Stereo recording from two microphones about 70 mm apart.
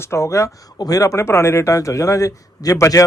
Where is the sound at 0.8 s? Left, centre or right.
Left.